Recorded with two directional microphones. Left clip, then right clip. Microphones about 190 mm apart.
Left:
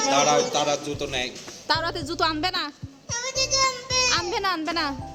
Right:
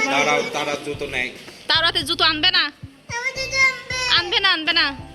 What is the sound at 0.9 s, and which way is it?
Speech, 30° left (ahead or behind).